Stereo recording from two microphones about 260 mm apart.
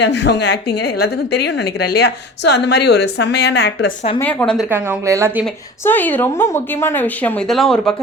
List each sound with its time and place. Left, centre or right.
0.0 s a woman's voice: left
4.2 s a woman's voice: centre
4.7 s a woman's voice: centre
5.8 s a woman's voice: centre